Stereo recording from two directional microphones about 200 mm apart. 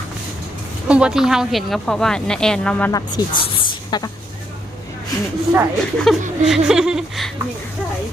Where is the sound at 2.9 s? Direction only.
20° left (ahead or behind).